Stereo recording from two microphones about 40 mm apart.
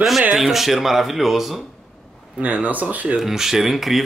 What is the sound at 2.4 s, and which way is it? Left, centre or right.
Speech, right.